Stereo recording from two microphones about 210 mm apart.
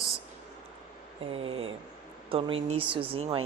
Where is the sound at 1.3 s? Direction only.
25° right (ahead or behind).